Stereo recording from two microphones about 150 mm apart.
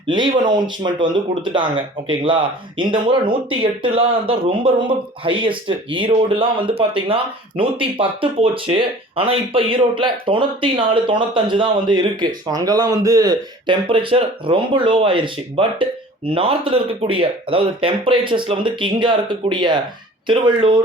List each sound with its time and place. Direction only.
0.1 s speech: 30° right (ahead or behind)